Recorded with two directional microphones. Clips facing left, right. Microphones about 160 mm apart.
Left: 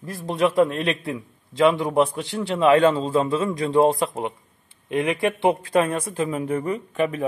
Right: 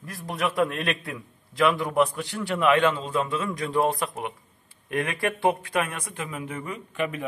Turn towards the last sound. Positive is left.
turn(degrees=35)  # may be behind; listen again after turning